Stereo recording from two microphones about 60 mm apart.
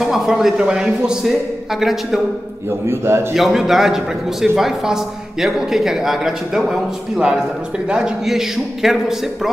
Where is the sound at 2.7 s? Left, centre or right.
Right.